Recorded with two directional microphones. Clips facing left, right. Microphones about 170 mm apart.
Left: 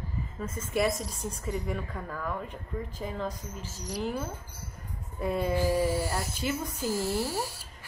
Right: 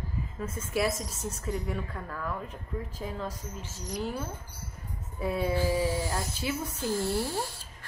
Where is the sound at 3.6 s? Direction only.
35° left (ahead or behind).